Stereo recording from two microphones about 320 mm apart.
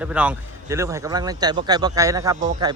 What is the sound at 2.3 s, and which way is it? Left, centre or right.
Speech, right.